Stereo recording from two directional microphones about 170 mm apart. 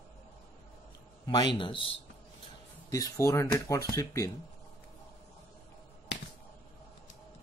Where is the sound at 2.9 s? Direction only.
20° left (ahead or behind).